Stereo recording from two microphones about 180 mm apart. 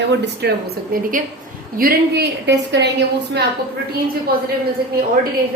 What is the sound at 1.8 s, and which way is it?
A woman's voice, 60° right (ahead or behind).